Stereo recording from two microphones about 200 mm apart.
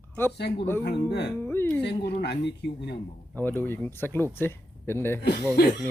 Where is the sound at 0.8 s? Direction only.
55° left (ahead or behind).